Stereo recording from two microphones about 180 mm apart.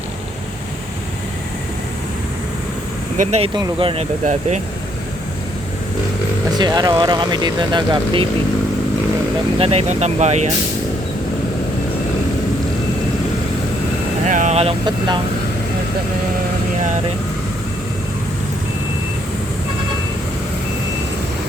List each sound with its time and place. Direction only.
3.2 s speech: 35° right (ahead or behind)
4.3 s speech: 40° right (ahead or behind)
6.6 s speech: 20° right (ahead or behind)
9.6 s speech: 35° right (ahead or behind)
14.3 s speech: 45° right (ahead or behind); by 15.2 s 25° right (ahead or behind)